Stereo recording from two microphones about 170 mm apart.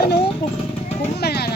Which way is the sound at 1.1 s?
70° left (ahead or behind).